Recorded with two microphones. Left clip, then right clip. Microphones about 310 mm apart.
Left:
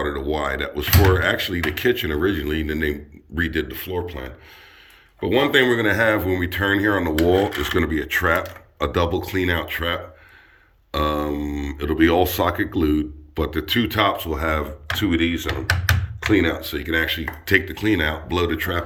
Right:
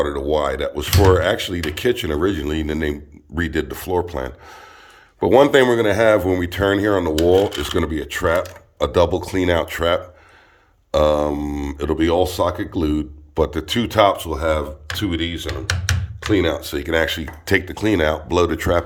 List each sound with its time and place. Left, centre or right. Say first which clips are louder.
0.2 s speech: right 4 dB; centre